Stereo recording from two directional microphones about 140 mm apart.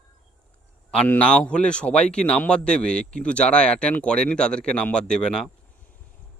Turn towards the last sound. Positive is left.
turn(degrees=5)  # may be behind; listen again after turning